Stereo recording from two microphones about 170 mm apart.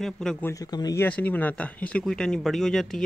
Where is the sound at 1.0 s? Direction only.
10° left (ahead or behind).